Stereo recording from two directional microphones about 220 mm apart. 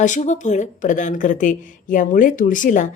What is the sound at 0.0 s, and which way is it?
A woman's voice, 35° left (ahead or behind).